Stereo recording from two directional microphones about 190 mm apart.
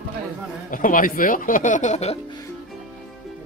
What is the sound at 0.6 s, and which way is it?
Speech, 45° left (ahead or behind).